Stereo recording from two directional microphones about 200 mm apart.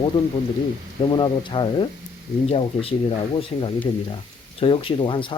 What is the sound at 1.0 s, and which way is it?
Speech, 25° left (ahead or behind).